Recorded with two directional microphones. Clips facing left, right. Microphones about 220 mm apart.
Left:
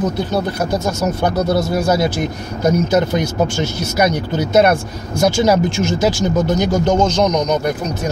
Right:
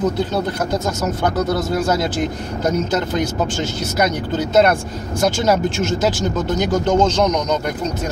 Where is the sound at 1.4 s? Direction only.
10° left (ahead or behind).